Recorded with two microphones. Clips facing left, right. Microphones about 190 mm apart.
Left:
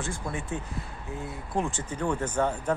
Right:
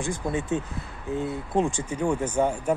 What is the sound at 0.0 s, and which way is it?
Speech, 20° right (ahead or behind).